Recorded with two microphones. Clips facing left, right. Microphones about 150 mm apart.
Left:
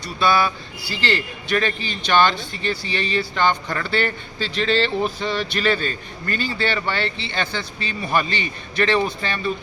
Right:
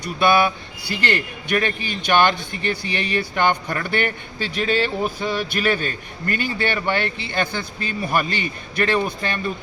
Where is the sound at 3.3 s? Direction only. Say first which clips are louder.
Right 1 dB; 15° right (ahead or behind).